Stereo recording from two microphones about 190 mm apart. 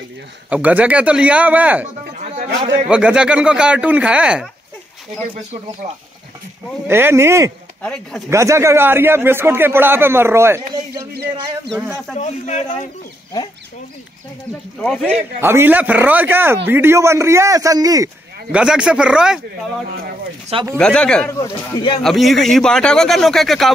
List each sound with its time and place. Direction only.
0.5 s a man's voice: 10° right (ahead or behind)
2.9 s speech: 5° right (ahead or behind)
6.9 s a man's voice: 10° right (ahead or behind)
7.8 s speech: 5° left (ahead or behind)
8.3 s a man's voice: 15° right (ahead or behind)
11.7 s speech: centre (ahead or behind)
12.2 s speech: 35° left (ahead or behind)
14.8 s speech: centre (ahead or behind)
15.0 s a man's voice: 10° right (ahead or behind)
18.5 s speech: 5° right (ahead or behind)
20.7 s speech: 5° left (ahead or behind)
21.3 s speech: 20° left (ahead or behind)
22.0 s speech: centre (ahead or behind)